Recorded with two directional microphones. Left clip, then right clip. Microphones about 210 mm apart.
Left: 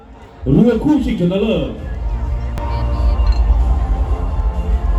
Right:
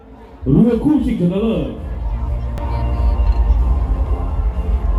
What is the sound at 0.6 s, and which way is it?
Speech, 40° left (ahead or behind).